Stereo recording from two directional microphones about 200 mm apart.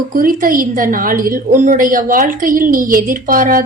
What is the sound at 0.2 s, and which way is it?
A woman's voice, 45° right (ahead or behind).